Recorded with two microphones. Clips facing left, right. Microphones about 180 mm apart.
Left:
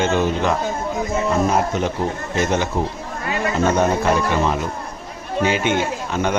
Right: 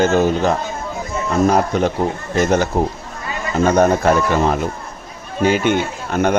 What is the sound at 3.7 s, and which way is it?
Speech, 45° right (ahead or behind).